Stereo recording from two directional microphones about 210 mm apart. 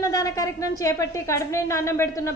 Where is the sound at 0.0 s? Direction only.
15° left (ahead or behind).